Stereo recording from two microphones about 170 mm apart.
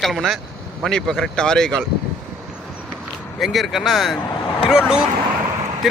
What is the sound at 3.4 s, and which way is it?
Speech, centre (ahead or behind).